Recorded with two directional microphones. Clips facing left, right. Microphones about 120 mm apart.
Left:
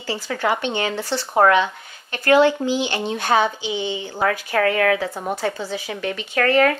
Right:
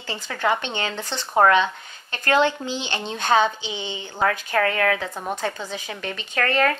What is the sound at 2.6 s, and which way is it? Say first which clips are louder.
Speech: left 6 dB; 10° left (ahead or behind).